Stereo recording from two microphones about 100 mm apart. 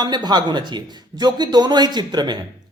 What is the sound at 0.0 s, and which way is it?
Speech, 45° right (ahead or behind).